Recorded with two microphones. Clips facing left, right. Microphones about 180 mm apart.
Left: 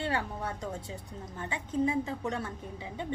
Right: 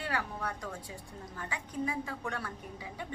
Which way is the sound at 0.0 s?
25° left (ahead or behind).